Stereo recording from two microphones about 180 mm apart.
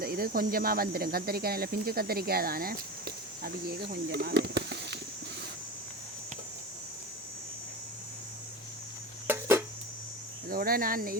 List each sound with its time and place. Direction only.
0.0 s speech: 55° right (ahead or behind)
9.2 s a sound: 15° right (ahead or behind)
10.5 s speech: 55° right (ahead or behind)